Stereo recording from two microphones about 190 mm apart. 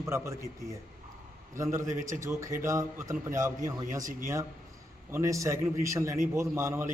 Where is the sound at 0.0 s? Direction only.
15° right (ahead or behind).